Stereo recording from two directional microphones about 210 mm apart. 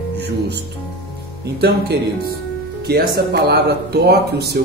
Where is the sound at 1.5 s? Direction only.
50° right (ahead or behind).